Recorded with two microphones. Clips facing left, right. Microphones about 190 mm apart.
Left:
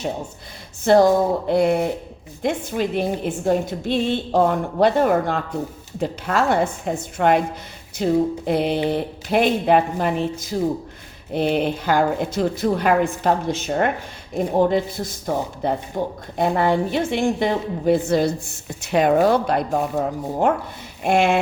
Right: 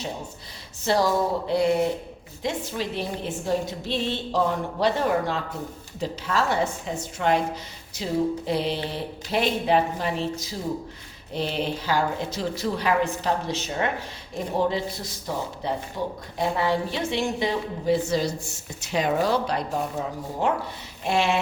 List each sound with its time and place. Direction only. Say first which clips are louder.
0.9 s a woman's voice: left 8 dB; 50° left (ahead or behind)